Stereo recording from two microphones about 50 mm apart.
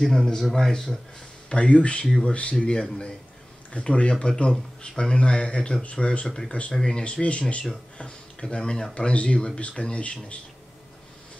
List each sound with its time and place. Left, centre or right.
0.0 s speech: centre
1.5 s speech: left
6.2 s speech: centre; by 10.4 s left